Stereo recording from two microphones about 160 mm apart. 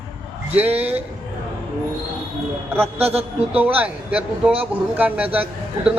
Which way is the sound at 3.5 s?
10° right (ahead or behind).